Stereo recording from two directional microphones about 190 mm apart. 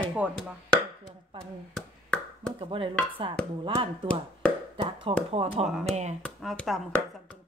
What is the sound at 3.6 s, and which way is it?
Speech, 30° right (ahead or behind).